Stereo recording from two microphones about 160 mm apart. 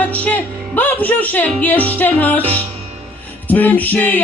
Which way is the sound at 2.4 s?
35° right (ahead or behind).